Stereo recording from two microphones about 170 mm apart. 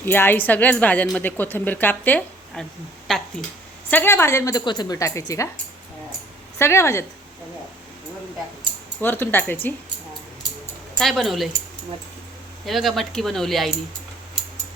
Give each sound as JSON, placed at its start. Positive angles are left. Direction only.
{"t": 0.0, "sound": "a woman's voice", "side_deg": 10}
{"t": 6.6, "sound": "a woman's voice", "side_deg": 15}
{"t": 9.0, "sound": "a woman's voice", "side_deg": 10}
{"t": 10.9, "sound": "speech", "side_deg": 0}
{"t": 12.6, "sound": "speech", "side_deg": 0}